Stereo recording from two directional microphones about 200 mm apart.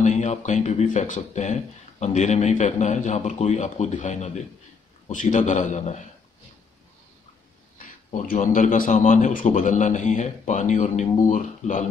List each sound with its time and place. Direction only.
0.0 s speech: 35° left (ahead or behind)
7.7 s speech: 40° left (ahead or behind)